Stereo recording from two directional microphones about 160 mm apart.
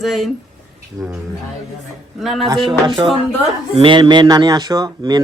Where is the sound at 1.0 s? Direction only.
25° right (ahead or behind).